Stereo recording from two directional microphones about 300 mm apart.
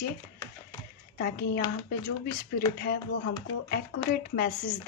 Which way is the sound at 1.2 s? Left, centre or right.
Left.